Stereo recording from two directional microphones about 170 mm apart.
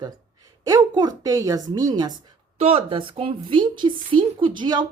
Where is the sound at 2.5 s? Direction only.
35° right (ahead or behind).